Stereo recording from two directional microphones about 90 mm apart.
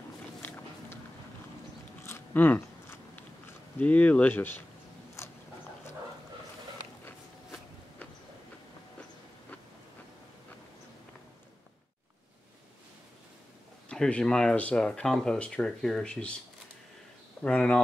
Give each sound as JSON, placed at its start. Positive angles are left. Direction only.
{"t": 0.4, "sound": "walk", "side_deg": 20}
{"t": 2.0, "sound": "biting", "side_deg": 25}
{"t": 3.8, "sound": "speech", "side_deg": 15}
{"t": 5.2, "sound": "a sound", "side_deg": 30}
{"t": 13.8, "sound": "speech", "side_deg": 10}
{"t": 17.4, "sound": "speech", "side_deg": 10}